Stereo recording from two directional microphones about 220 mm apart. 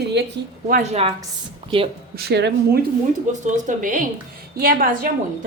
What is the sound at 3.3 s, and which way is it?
A woman's voice, 35° right (ahead or behind).